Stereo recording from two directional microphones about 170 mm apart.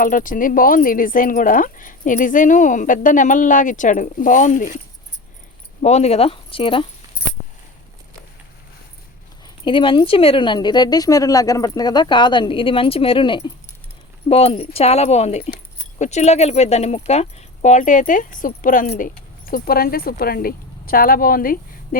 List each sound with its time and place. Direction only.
0.0 s speech: 50° left (ahead or behind)
5.8 s speech: 40° left (ahead or behind)
9.6 s speech: 30° left (ahead or behind); by 21.6 s 55° left (ahead or behind)